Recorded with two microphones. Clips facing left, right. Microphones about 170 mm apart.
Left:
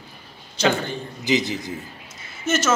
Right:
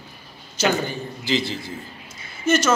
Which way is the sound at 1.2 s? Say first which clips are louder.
Left 3 dB; 20° left (ahead or behind).